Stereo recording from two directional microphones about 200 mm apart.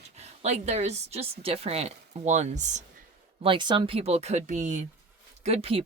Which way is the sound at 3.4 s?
25° right (ahead or behind).